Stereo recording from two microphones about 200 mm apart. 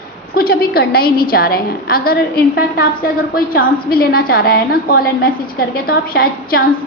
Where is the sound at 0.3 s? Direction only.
50° left (ahead or behind).